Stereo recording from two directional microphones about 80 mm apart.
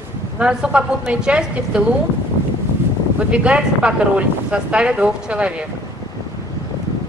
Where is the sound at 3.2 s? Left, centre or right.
Centre.